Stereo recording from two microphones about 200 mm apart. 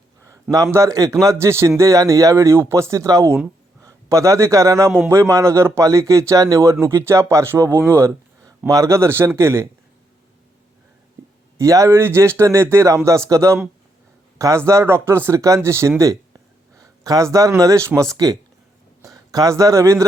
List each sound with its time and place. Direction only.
0.5 s a man's voice: 15° right (ahead or behind)
11.5 s a man's voice: 15° right (ahead or behind)
16.7 s a sound: 15° right (ahead or behind)
17.6 s a man's voice: 15° right (ahead or behind)